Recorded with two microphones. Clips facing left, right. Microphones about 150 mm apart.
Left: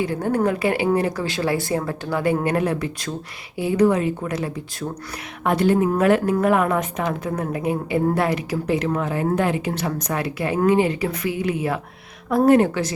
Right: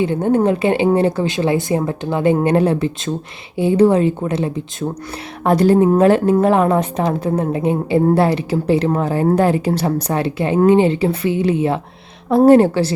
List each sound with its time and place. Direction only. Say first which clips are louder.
0.0 s speech: right 6 dB; 25° right (ahead or behind)
5.4 s a woman's voice: right 6 dB; 35° right (ahead or behind)